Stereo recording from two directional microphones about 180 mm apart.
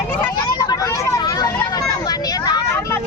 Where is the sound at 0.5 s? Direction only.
20° left (ahead or behind).